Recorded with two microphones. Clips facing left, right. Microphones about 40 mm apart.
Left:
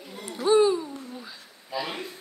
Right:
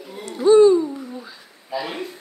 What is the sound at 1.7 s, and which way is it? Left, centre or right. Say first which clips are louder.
Speech: right 4 dB; centre.